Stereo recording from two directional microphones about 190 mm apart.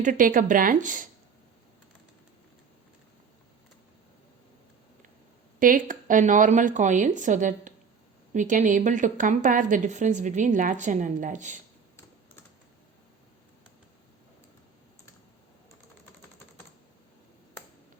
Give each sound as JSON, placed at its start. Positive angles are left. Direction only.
{"t": 0.0, "sound": "a woman's voice", "side_deg": -45}
{"t": 5.5, "sound": "a woman's voice", "side_deg": -45}